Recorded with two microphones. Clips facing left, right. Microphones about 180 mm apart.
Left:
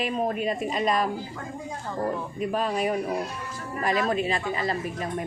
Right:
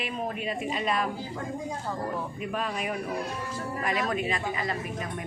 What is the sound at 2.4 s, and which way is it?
A woman's voice, 35° left (ahead or behind).